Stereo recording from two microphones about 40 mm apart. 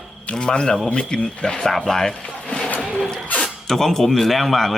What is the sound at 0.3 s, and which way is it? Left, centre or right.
Speech, left.